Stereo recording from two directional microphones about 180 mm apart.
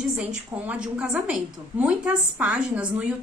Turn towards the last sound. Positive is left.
turn(degrees=-5)  # may be behind; listen again after turning